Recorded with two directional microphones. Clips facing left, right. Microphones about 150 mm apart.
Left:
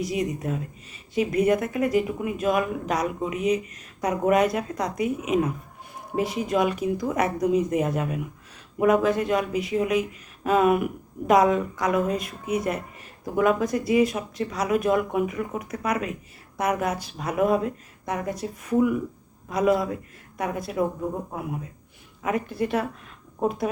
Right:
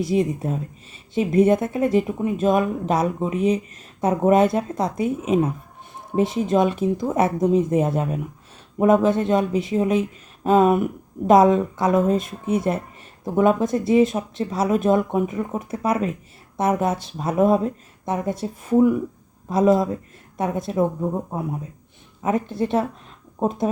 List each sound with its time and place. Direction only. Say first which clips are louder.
0.0 s speech: right 5 dB; 30° right (ahead or behind)